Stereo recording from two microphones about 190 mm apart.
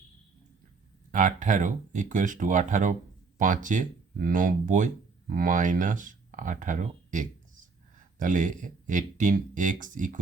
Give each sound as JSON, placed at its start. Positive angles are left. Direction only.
{"t": 1.1, "sound": "speech", "side_deg": -40}